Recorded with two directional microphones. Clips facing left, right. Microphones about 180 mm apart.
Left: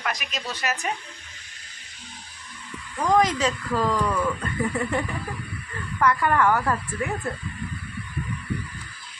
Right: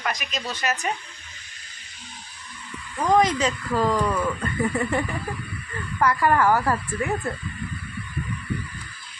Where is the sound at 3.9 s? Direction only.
20° right (ahead or behind).